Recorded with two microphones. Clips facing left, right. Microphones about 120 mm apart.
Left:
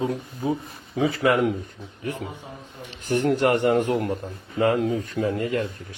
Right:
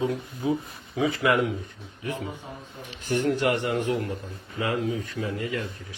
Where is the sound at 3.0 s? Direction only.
45° left (ahead or behind).